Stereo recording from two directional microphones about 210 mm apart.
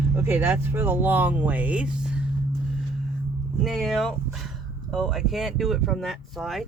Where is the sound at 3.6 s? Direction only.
Centre (ahead or behind).